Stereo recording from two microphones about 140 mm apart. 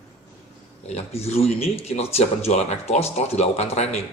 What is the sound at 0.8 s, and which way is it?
Speech, 50° left (ahead or behind).